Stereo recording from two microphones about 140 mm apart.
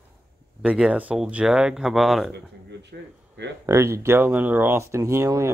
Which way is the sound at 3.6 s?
20° right (ahead or behind).